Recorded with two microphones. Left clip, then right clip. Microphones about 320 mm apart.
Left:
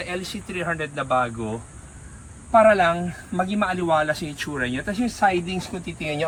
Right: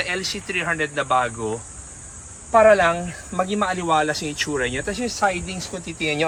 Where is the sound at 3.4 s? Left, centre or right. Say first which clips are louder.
Right 1 dB; centre.